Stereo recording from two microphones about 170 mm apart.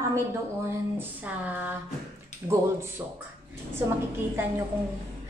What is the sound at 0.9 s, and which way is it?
A woman's voice, 10° right (ahead or behind).